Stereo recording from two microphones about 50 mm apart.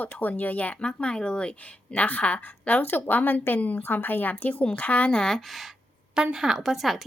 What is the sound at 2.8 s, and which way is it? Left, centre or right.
A woman's voice, left.